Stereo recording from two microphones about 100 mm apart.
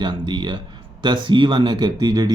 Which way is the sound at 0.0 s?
50° right (ahead or behind).